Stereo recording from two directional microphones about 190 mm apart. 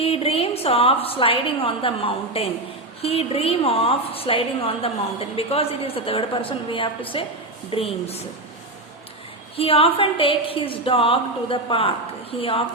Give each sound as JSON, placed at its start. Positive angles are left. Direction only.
{"t": 0.0, "sound": "a woman's voice", "side_deg": 30}
{"t": 9.6, "sound": "a woman's voice", "side_deg": 30}